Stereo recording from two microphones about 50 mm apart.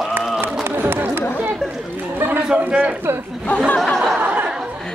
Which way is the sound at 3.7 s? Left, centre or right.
Centre.